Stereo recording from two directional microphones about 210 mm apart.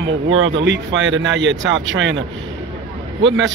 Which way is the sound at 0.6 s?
60° right (ahead or behind).